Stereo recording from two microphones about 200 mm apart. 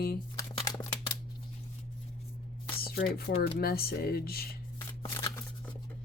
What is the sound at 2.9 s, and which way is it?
Speech, 50° left (ahead or behind).